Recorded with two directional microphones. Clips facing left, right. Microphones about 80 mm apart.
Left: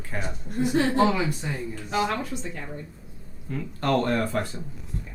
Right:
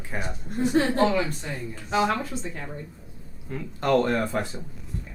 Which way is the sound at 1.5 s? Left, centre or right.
Centre.